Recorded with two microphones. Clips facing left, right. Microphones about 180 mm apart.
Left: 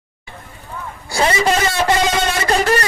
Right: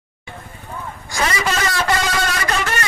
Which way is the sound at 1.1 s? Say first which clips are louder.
Left 5 dB; 30° left (ahead or behind).